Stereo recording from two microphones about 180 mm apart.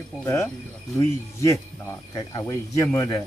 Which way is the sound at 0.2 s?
15° left (ahead or behind).